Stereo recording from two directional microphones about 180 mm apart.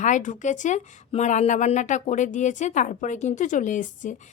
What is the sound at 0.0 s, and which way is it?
Speech, 45° left (ahead or behind).